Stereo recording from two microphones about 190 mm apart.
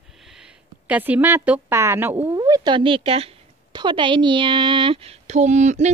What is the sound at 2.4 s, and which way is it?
A woman's voice, 20° right (ahead or behind).